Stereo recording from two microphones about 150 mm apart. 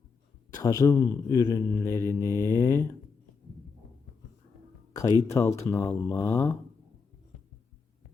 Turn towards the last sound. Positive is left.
turn(degrees=15)  # may be behind; listen again after turning